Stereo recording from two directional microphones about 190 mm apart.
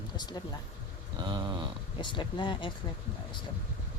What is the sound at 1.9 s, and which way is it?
Speech, 25° left (ahead or behind).